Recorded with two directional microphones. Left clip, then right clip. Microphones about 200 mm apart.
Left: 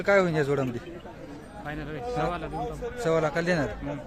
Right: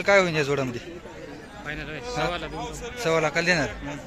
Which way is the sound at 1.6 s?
55° left (ahead or behind).